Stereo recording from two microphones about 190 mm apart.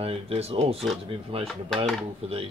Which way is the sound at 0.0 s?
30° right (ahead or behind).